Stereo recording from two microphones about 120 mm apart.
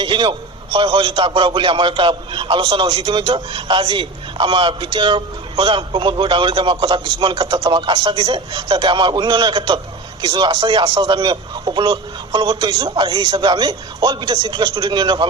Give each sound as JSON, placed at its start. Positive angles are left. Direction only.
{"t": 0.0, "sound": "a man's voice", "side_deg": -40}